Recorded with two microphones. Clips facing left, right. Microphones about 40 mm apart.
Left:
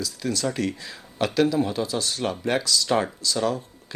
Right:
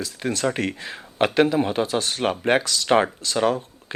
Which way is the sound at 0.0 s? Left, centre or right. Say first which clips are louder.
Right 2 dB; right.